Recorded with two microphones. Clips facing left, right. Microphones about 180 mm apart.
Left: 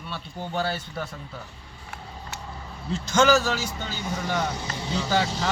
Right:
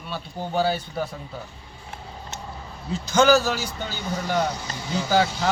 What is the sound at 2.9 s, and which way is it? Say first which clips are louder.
Speech: right 2 dB; 5° right (ahead or behind).